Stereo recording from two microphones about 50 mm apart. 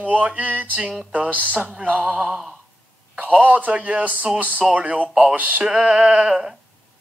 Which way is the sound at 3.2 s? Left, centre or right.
Right.